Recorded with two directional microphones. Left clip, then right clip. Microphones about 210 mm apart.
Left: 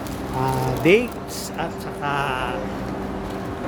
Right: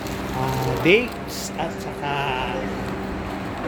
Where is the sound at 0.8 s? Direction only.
15° left (ahead or behind).